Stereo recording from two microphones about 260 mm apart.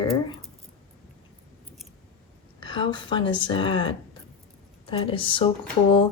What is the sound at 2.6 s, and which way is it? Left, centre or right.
A woman's voice, centre.